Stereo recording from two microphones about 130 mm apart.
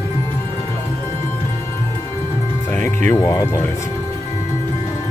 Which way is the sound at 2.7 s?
15° left (ahead or behind).